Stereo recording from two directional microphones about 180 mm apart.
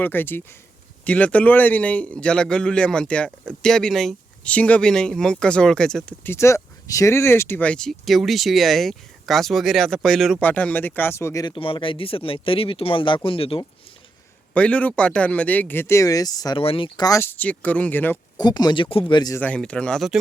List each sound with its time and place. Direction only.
0.0 s speech: 10° left (ahead or behind); by 13.7 s 30° left (ahead or behind)
14.5 s speech: 5° left (ahead or behind)
18.3 s speech: 25° left (ahead or behind)
19.4 s speech: 5° left (ahead or behind)